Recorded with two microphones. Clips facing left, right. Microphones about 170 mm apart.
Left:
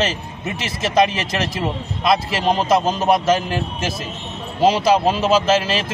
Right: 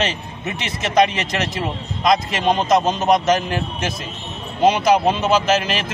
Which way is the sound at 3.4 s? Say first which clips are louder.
Even; 30° left (ahead or behind).